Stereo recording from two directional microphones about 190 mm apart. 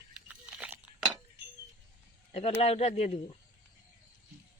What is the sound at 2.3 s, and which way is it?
Speech, 35° left (ahead or behind).